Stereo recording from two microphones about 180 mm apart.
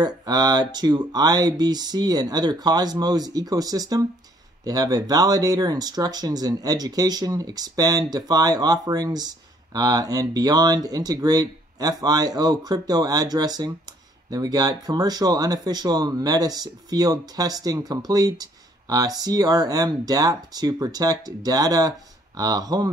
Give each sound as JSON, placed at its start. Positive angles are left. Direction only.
{"t": 0.0, "sound": "speech", "side_deg": -20}